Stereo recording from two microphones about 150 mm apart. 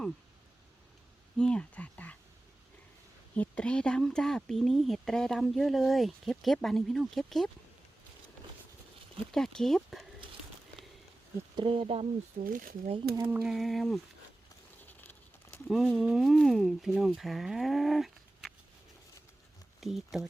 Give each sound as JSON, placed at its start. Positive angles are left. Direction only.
{"t": 1.4, "sound": "speech", "side_deg": 5}
{"t": 3.3, "sound": "speech", "side_deg": 10}
{"t": 9.3, "sound": "speech", "side_deg": 5}
{"t": 11.5, "sound": "speech", "side_deg": -35}
{"t": 12.5, "sound": "speech", "side_deg": -65}
{"t": 13.1, "sound": "a sound", "side_deg": -15}
{"t": 13.4, "sound": "speech", "side_deg": 0}
{"t": 15.6, "sound": "speech", "side_deg": -5}
{"t": 19.8, "sound": "speech", "side_deg": 0}